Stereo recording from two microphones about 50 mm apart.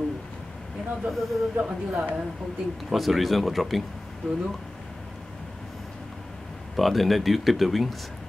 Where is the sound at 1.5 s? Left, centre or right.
Centre.